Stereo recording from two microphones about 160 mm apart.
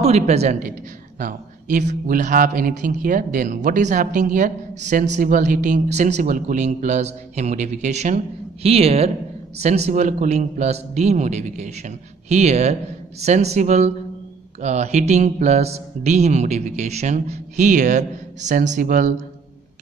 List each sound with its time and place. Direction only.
0.0 s a woman's voice: 40° right (ahead or behind)